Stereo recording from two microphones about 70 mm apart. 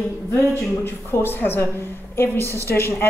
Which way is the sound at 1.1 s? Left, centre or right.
Left.